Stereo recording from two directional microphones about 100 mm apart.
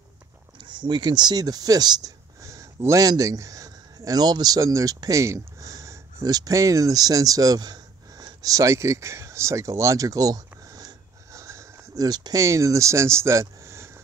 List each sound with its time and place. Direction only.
0.6 s speech: 50° right (ahead or behind); by 13.9 s 30° right (ahead or behind)